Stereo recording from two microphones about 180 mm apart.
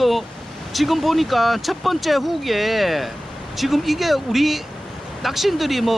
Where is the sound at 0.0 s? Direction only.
Centre (ahead or behind).